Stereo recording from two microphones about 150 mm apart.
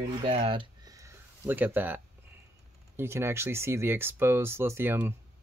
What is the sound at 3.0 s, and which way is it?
Speech, 15° right (ahead or behind).